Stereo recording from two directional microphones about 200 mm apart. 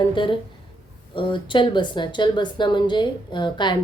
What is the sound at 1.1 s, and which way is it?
A woman's voice, 25° left (ahead or behind).